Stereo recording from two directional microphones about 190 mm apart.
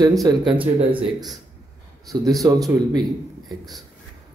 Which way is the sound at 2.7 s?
20° right (ahead or behind).